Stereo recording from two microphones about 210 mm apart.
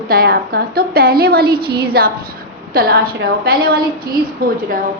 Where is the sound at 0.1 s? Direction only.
45° right (ahead or behind).